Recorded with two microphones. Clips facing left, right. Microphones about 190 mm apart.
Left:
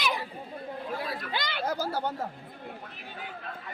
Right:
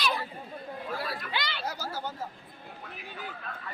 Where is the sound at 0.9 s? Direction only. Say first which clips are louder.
Even; 20° left (ahead or behind).